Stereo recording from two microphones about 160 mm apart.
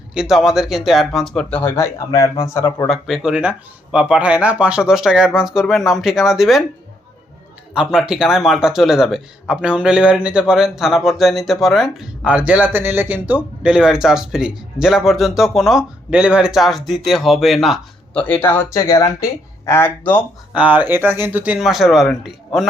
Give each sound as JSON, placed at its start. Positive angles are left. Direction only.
{"t": 0.1, "sound": "speech", "side_deg": -5}
{"t": 2.8, "sound": "speech", "side_deg": 0}
{"t": 7.7, "sound": "speech", "side_deg": -5}
{"t": 20.5, "sound": "speech", "side_deg": -10}